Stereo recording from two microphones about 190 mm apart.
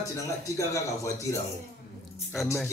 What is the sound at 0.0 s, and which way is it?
A man's voice, 15° left (ahead or behind).